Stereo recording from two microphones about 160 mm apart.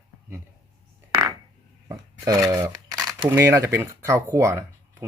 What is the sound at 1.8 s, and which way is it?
Speech, 20° right (ahead or behind).